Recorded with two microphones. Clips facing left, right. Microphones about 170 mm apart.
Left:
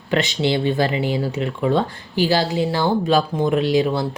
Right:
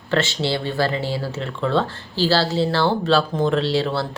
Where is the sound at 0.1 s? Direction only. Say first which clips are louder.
Left 2 dB; 15° left (ahead or behind).